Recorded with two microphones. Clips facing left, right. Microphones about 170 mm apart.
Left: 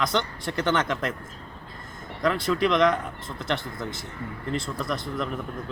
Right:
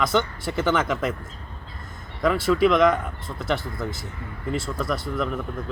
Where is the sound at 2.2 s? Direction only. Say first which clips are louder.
Right 4 dB; 5° right (ahead or behind).